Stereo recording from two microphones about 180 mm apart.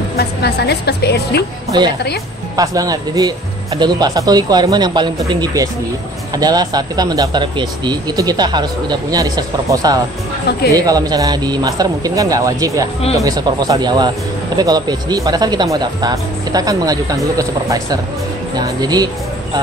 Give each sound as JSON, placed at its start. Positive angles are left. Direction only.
{"t": 0.2, "sound": "a woman's voice", "side_deg": 65}
{"t": 1.7, "sound": "speech", "side_deg": -25}